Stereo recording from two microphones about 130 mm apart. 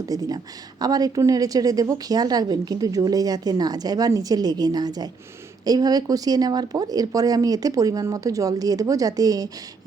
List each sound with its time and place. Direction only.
0.0 s a woman's voice: 30° right (ahead or behind)